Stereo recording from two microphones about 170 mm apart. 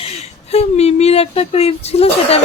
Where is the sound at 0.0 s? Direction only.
40° left (ahead or behind).